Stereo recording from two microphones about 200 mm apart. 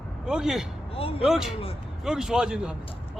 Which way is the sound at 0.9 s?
30° left (ahead or behind).